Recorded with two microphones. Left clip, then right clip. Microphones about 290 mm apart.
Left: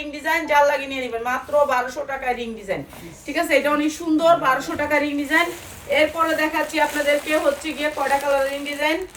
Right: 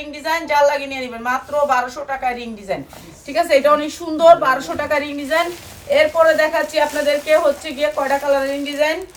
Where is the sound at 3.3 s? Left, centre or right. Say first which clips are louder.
Right 5 dB; centre.